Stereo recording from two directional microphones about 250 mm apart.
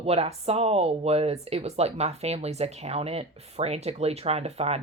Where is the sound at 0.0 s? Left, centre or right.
Right.